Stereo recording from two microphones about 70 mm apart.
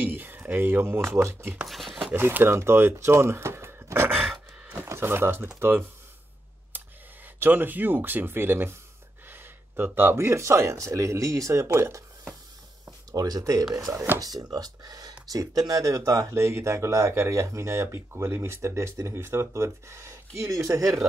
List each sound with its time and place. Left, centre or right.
0.0 s speech: right
1.7 s speech: centre
2.1 s speech: right
6.7 s a sound: right
7.3 s speech: right
12.8 s a sound: right
13.9 s speech: right
14.2 s speech: right